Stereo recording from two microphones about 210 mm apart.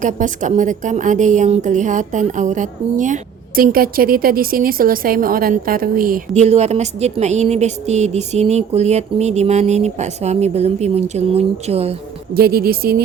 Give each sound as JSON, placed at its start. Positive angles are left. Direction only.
{"t": 0.0, "sound": "a woman's voice", "side_deg": -35}
{"t": 12.3, "sound": "speech", "side_deg": -45}